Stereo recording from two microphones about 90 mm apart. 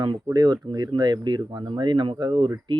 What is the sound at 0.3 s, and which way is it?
Speech, 45° right (ahead or behind).